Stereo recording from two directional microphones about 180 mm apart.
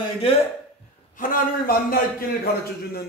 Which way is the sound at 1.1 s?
50° left (ahead or behind).